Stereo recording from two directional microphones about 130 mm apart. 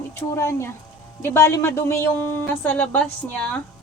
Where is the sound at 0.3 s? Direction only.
20° left (ahead or behind).